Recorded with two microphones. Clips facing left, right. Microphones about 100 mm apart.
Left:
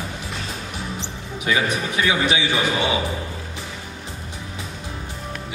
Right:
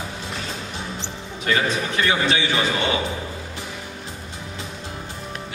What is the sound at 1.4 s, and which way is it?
Speech, 15° left (ahead or behind).